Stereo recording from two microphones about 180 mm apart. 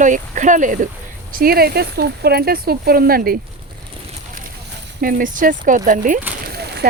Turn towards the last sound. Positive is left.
turn(degrees=-65)  # may be behind; listen again after turning